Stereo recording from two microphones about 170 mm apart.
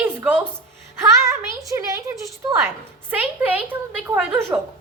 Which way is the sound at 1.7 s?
20° right (ahead or behind).